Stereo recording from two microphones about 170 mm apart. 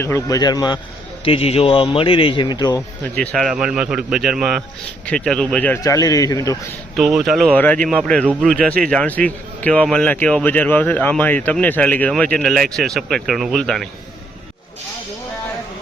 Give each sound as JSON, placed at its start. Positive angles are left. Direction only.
{"t": 0.0, "sound": "speech", "side_deg": 20}
{"t": 3.2, "sound": "a man's voice", "side_deg": 0}
{"t": 5.8, "sound": "speech", "side_deg": 20}
{"t": 6.9, "sound": "a man's voice", "side_deg": 0}
{"t": 8.2, "sound": "speech", "side_deg": -10}
{"t": 8.4, "sound": "a man's voice", "side_deg": 5}